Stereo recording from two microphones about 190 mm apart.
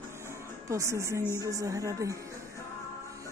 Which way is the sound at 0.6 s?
15° right (ahead or behind).